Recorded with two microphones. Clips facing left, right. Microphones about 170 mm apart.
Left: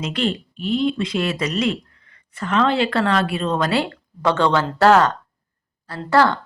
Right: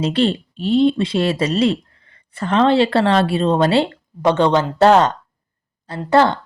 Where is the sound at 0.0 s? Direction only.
30° right (ahead or behind).